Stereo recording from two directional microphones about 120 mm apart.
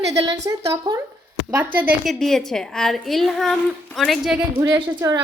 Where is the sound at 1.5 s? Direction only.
15° right (ahead or behind).